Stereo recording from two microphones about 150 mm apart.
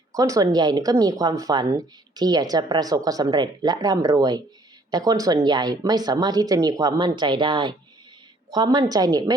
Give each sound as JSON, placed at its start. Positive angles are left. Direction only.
{"t": 0.1, "sound": "speech", "side_deg": -25}